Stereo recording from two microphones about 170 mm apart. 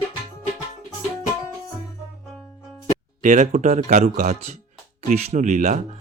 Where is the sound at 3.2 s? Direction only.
45° right (ahead or behind).